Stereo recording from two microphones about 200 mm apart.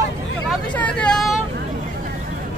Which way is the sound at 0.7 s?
5° left (ahead or behind).